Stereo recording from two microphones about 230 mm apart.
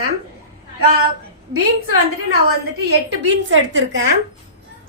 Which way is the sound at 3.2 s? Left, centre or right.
Right.